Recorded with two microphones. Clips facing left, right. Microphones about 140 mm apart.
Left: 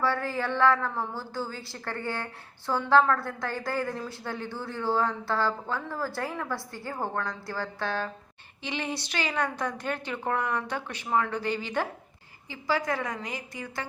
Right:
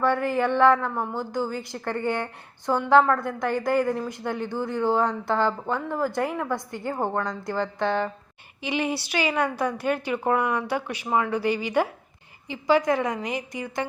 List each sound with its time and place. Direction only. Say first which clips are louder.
0.0 s a woman's voice: right 6 dB; 15° right (ahead or behind)